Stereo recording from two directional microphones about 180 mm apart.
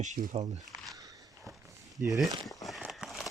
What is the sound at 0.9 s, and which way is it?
Biting, 20° right (ahead or behind).